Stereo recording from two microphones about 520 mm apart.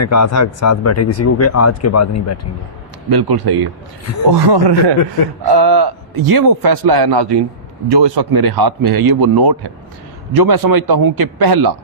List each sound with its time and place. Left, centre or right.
0.0 s speech: left
3.1 s a man's voice: right